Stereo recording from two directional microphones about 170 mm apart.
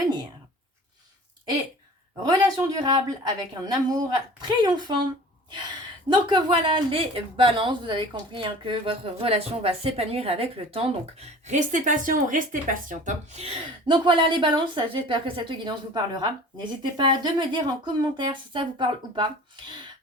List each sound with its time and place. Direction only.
2.4 s a woman's voice: 25° right (ahead or behind)
16.8 s speech: 25° right (ahead or behind)